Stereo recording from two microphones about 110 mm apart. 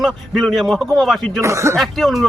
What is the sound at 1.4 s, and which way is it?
Speech, 25° right (ahead or behind).